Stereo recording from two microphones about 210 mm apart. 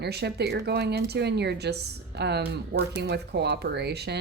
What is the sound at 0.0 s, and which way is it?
A woman's voice, 50° right (ahead or behind).